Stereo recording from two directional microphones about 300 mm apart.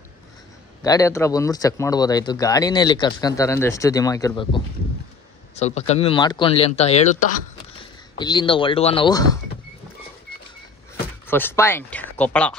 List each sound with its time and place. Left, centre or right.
0.8 s speech: centre
5.6 s speech: left
11.2 s speech: centre